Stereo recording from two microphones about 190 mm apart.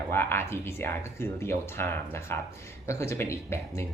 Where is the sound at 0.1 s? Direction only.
10° left (ahead or behind).